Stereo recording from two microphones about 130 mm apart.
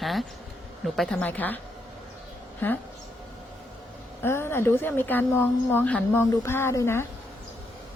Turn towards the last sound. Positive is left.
turn(degrees=20)  # may be behind; listen again after turning